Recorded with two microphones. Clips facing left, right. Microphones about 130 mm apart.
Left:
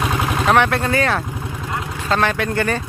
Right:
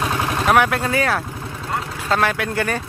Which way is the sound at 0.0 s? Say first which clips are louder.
Left 1 dB; 5° left (ahead or behind).